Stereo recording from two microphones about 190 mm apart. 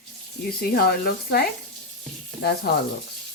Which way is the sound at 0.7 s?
55° left (ahead or behind).